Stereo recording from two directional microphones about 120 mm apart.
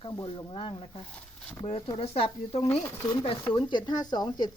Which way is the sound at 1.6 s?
60° left (ahead or behind).